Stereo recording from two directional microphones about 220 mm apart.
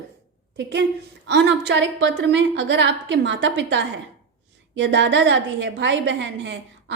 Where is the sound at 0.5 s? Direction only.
50° right (ahead or behind).